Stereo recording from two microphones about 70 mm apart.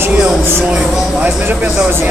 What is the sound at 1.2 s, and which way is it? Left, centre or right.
Speech, right.